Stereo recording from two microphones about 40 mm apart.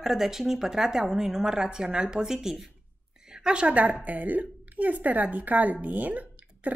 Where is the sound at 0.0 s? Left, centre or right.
Centre.